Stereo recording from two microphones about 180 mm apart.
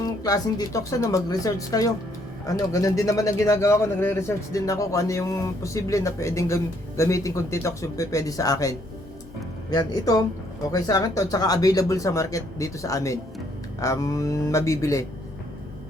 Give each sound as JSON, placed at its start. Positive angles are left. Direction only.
{"t": 0.0, "sound": "speech", "side_deg": 20}